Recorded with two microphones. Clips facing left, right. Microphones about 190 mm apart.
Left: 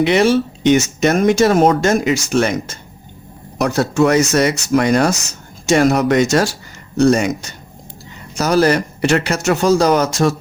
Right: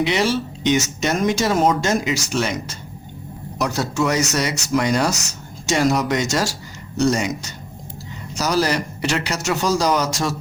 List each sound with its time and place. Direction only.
0.0 s speech: 55° left (ahead or behind)